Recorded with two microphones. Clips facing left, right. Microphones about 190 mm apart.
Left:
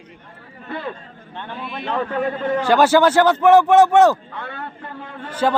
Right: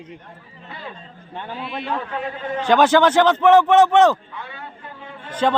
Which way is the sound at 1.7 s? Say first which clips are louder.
Left 4 dB; 50° left (ahead or behind).